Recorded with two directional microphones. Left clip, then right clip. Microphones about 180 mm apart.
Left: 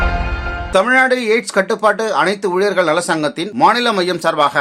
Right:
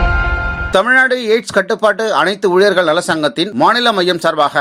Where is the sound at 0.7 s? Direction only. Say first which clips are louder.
Right 1 dB; 25° right (ahead or behind).